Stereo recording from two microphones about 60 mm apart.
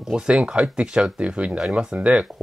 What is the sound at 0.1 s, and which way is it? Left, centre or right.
Speech, centre.